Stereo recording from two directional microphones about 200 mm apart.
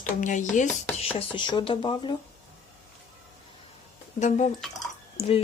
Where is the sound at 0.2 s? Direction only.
40° left (ahead or behind).